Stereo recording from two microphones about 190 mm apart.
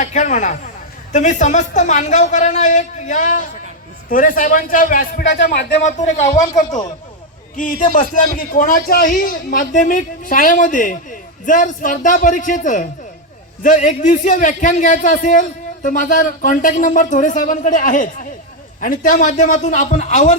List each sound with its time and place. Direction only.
0.0 s a woman's voice: 40° left (ahead or behind)
5.2 s a man's voice: 60° left (ahead or behind)
5.8 s a woman's voice: 40° left (ahead or behind)